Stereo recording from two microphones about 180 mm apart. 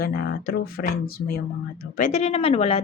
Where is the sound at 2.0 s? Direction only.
40° left (ahead or behind).